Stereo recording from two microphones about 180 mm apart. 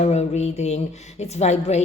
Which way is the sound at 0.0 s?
35° left (ahead or behind).